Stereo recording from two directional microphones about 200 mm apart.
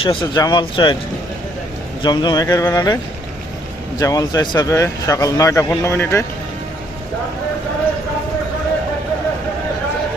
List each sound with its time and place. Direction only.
0.0 s speech: 25° left (ahead or behind)
2.0 s speech: 20° left (ahead or behind)